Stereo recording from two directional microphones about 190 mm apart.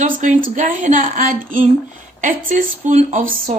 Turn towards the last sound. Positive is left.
turn(degrees=-45)  # may be behind; listen again after turning